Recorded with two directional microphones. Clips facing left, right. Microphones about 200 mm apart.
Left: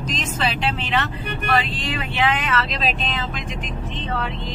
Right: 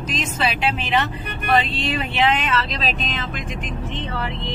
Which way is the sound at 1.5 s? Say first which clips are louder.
Right 4 dB; 25° right (ahead or behind).